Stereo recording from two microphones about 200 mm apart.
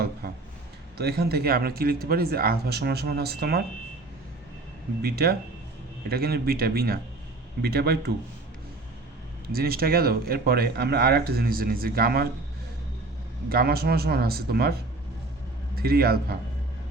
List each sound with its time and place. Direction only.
0.9 s speech: 55° right (ahead or behind)
5.0 s speech: 50° right (ahead or behind)
9.5 s speech: 50° right (ahead or behind)
13.5 s speech: 50° right (ahead or behind)